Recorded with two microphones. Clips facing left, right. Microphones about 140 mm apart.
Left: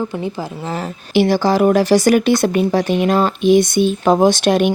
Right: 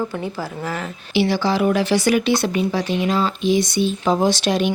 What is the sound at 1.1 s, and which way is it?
Speech, 45° left (ahead or behind).